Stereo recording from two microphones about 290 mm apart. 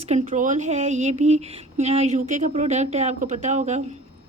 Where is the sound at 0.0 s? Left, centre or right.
Right.